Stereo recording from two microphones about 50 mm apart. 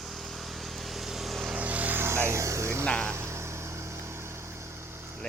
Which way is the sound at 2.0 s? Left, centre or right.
Right.